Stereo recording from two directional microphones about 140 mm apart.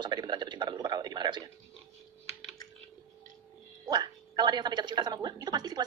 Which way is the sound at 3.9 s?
30° right (ahead or behind).